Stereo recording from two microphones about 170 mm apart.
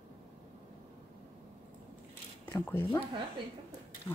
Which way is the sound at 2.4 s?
15° left (ahead or behind).